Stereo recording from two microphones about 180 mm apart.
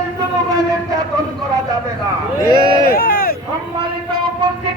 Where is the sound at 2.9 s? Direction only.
55° left (ahead or behind).